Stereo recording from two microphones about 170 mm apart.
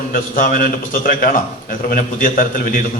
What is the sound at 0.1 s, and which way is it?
A man's voice, 55° left (ahead or behind).